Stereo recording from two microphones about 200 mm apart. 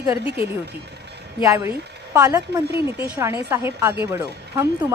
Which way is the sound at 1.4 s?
15° right (ahead or behind).